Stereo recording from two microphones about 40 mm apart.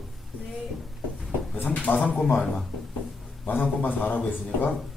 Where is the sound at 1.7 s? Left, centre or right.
Left.